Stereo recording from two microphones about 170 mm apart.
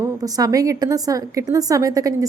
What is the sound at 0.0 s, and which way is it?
A woman's voice, 20° right (ahead or behind).